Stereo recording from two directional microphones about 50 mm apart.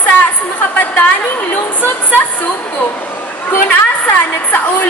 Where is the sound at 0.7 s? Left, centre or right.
Left.